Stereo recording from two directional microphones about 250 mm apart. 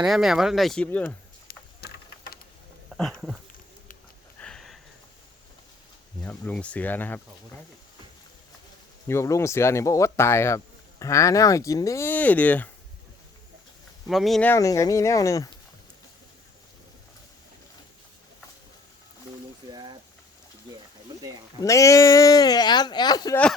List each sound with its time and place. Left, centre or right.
0.0 s speech: centre
1.5 s a sound: left
2.9 s a sound: centre
4.4 s sniff: centre
6.2 s speech: centre
9.0 s speech: centre
14.1 s speech: centre
19.7 s a sound: centre
21.6 s speech: centre